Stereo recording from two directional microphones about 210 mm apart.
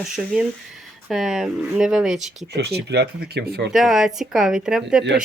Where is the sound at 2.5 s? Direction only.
50° right (ahead or behind).